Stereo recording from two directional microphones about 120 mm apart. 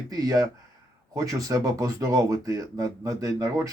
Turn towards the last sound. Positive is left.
turn(degrees=-25)  # may be behind; listen again after turning